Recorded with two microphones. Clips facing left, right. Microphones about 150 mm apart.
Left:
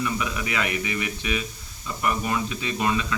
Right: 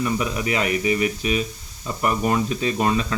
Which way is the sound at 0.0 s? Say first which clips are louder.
Right 4 dB; 35° right (ahead or behind).